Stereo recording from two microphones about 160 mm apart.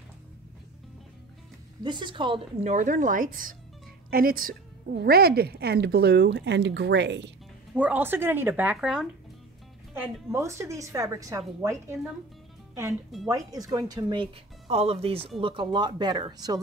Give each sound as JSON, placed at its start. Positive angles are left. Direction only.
{"t": 1.8, "sound": "speech", "side_deg": -30}
{"t": 2.6, "sound": "a woman's voice", "side_deg": -50}
{"t": 7.7, "sound": "speech", "side_deg": -10}
{"t": 13.3, "sound": "speech", "side_deg": -25}